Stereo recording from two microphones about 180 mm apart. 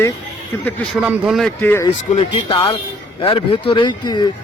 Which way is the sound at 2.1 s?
30° left (ahead or behind).